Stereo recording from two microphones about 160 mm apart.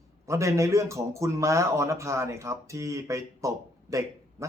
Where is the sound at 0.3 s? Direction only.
20° right (ahead or behind).